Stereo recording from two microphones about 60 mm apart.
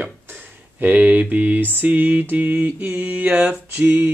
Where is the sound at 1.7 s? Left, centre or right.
Right.